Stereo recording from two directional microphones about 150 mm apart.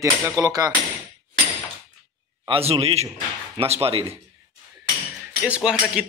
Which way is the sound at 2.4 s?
40° right (ahead or behind).